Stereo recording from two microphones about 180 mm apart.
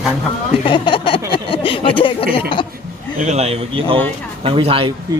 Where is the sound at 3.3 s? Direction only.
35° right (ahead or behind).